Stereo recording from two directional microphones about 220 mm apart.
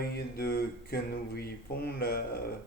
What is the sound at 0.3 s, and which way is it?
Speech, 45° left (ahead or behind).